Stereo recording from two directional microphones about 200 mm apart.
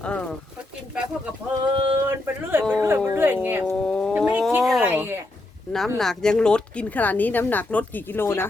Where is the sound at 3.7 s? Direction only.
5° left (ahead or behind).